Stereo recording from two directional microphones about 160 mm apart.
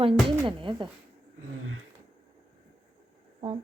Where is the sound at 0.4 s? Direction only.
30° right (ahead or behind).